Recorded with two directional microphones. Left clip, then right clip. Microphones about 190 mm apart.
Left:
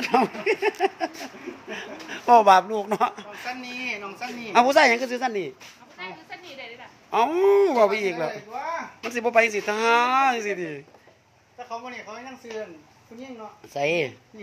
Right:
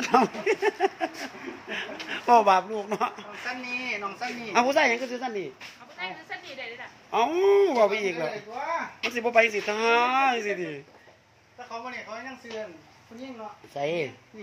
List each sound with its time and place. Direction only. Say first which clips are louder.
0.0 s speech: left 1 dB; 5° left (ahead or behind)
2.7 s a woman's voice: left 4 dB; 35° left (ahead or behind)
3.0 s speech: left 5 dB; 20° left (ahead or behind)
3.6 s a woman's voice: right 3 dB; 40° left (ahead or behind)
4.5 s a woman's voice: left 5 dB; 25° left (ahead or behind)
7.1 s speech: left 2 dB; 15° left (ahead or behind)
12.5 s speech: left 3 dB; 50° left (ahead or behind)
13.7 s speech: left 5 dB; 30° left (ahead or behind)